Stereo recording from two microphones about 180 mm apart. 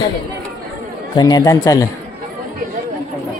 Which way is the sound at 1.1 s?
20° left (ahead or behind).